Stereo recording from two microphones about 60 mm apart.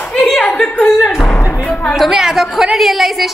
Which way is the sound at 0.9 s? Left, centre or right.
Centre.